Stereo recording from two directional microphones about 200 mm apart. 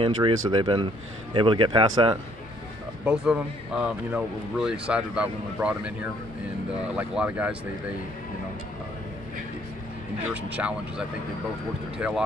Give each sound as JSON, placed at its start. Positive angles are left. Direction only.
{"t": 0.0, "sound": "speech", "side_deg": -25}
{"t": 3.1, "sound": "speech", "side_deg": -5}
{"t": 10.3, "sound": "speech", "side_deg": -5}